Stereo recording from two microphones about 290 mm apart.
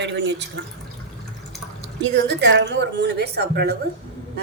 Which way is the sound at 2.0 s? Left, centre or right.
Right.